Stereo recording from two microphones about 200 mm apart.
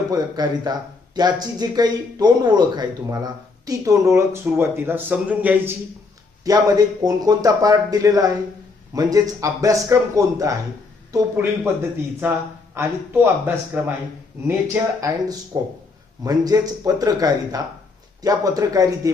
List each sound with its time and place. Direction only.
0.1 s speech: 20° right (ahead or behind)